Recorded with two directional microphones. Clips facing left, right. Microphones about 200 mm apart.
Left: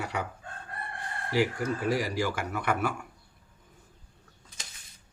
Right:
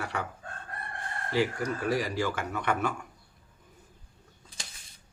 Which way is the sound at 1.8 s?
10° left (ahead or behind).